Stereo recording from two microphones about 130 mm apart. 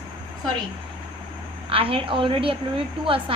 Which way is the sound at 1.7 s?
45° right (ahead or behind).